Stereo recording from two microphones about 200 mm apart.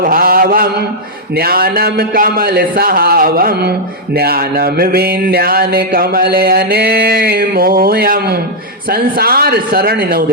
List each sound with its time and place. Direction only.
0.0 s mantra: 45° right (ahead or behind)
1.4 s a man's voice: 50° right (ahead or behind)